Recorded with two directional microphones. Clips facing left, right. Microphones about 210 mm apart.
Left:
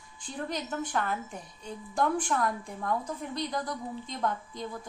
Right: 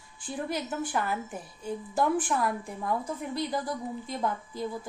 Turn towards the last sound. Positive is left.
turn(degrees=-5)  # may be behind; listen again after turning